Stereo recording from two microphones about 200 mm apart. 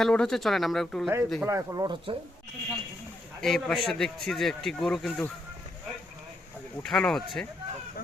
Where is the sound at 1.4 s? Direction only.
15° right (ahead or behind).